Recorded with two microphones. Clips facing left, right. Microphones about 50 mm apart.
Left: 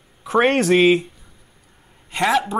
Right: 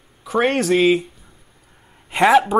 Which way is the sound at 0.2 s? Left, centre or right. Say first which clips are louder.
Left 2 dB; centre.